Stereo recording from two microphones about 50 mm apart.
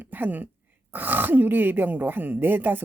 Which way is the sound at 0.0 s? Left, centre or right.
Right.